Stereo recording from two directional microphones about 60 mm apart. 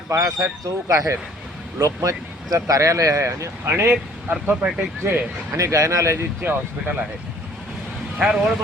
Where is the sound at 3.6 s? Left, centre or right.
Right.